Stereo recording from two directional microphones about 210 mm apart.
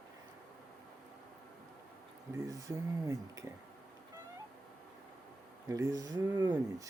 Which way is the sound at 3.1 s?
15° right (ahead or behind).